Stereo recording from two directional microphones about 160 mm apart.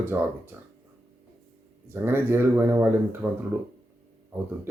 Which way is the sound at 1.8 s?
15° right (ahead or behind).